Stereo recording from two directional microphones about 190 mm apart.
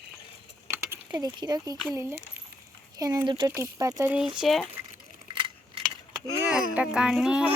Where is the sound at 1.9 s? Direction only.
15° right (ahead or behind).